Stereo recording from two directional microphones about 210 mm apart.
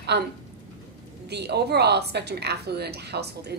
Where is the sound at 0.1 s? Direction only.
55° right (ahead or behind).